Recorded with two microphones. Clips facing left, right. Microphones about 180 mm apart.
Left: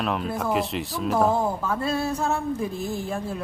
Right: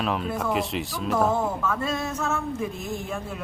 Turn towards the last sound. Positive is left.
turn(degrees=35)  # may be behind; listen again after turning